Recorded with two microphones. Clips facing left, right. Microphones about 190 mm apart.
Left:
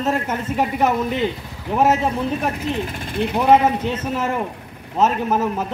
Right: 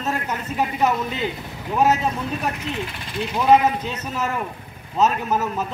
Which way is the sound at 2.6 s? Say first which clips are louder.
Left 5 dB; 40° left (ahead or behind).